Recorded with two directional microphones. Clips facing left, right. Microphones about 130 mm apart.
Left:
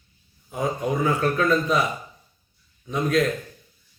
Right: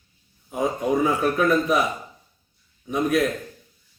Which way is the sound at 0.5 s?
20° right (ahead or behind).